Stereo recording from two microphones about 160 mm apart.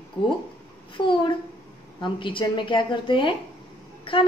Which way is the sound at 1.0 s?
30° left (ahead or behind).